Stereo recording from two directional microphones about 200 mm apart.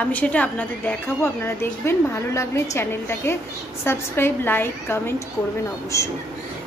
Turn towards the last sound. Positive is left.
turn(degrees=15)  # may be behind; listen again after turning